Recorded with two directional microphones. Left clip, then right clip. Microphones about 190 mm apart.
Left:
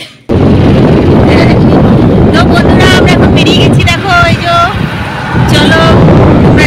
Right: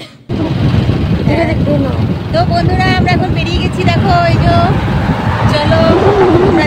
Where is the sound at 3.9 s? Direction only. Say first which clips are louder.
Left 1 dB; 20° left (ahead or behind).